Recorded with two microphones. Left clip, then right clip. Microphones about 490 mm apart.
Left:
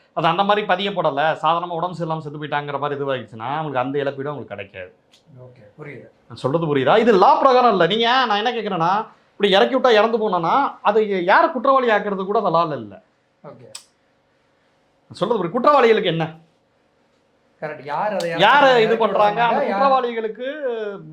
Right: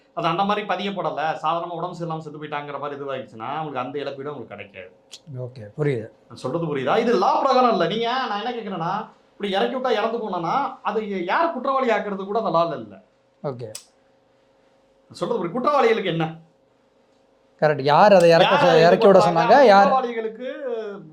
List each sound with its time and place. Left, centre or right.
0.1 s speech: left
6.3 s speech: left
15.1 s speech: left
17.6 s speech: right
18.3 s speech: left